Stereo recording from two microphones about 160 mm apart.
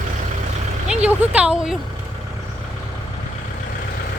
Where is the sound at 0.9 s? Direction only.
10° right (ahead or behind).